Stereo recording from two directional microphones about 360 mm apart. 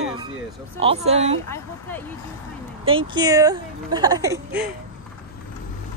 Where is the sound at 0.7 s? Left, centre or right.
Centre.